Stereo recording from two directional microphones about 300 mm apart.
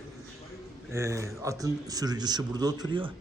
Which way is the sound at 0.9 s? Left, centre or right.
Centre.